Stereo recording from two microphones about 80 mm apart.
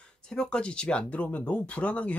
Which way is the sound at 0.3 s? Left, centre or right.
Centre.